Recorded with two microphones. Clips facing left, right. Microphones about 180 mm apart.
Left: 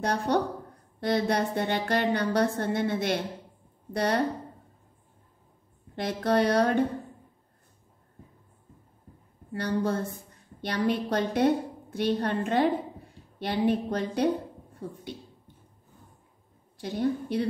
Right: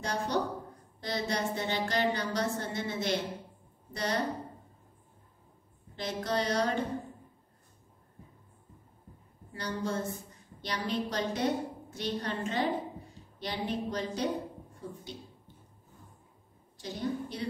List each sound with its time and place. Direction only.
0.0 s music: 60° left (ahead or behind)
5.9 s music: 60° left (ahead or behind)
9.5 s music: 60° left (ahead or behind)
16.7 s music: 60° left (ahead or behind)